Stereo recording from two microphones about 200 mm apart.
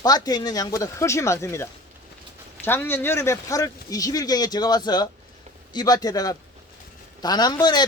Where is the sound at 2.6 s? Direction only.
10° left (ahead or behind).